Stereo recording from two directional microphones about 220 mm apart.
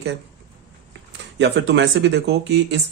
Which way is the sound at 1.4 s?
60° right (ahead or behind).